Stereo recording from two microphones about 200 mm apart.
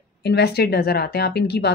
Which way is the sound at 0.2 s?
55° left (ahead or behind).